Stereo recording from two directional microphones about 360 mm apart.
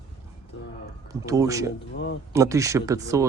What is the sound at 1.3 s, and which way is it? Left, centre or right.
Speech, centre.